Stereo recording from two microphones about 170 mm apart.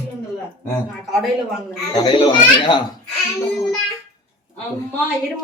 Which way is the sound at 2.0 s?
30° left (ahead or behind).